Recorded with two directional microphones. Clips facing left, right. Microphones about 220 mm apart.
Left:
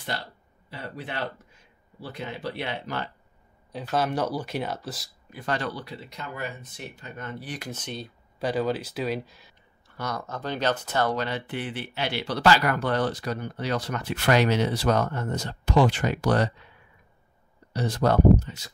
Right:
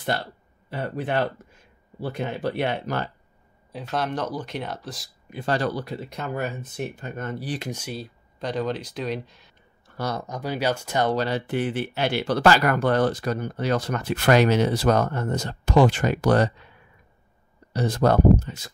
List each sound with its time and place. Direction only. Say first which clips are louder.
0.7 s speech: right 8 dB; 50° right (ahead or behind)
3.7 s speech: left 1 dB; 5° left (ahead or behind)
5.3 s speech: right 5 dB; 30° right (ahead or behind)
7.7 s speech: right 3 dB; 5° right (ahead or behind)
8.4 s speech: left 1 dB; 5° left (ahead or behind)
9.8 s a sound: right 4 dB; 40° right (ahead or behind)
10.1 s speech: right 2 dB; 15° right (ahead or behind)
11.1 s speech: right 4 dB; 35° right (ahead or behind)
17.7 s speech: right 3 dB; 50° right (ahead or behind)